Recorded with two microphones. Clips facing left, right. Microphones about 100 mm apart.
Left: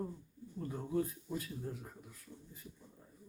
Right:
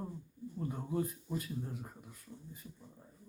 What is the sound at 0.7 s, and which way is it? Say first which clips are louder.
Speech: left 1 dB; 5° right (ahead or behind).